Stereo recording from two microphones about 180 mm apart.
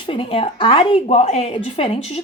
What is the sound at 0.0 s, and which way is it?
A woman's voice, 30° left (ahead or behind).